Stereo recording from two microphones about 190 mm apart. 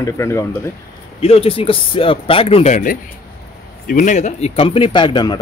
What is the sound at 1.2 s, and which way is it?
Speech, 30° left (ahead or behind).